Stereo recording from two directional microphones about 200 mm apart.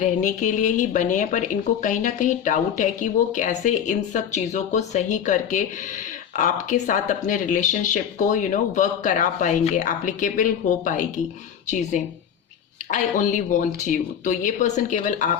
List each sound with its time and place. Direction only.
0.0 s speech: 35° left (ahead or behind)
12.9 s speech: 40° left (ahead or behind)